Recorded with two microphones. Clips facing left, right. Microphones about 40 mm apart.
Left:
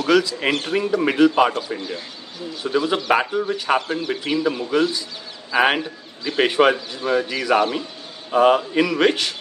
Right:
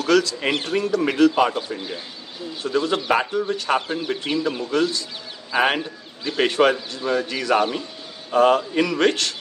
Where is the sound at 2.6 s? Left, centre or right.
Centre.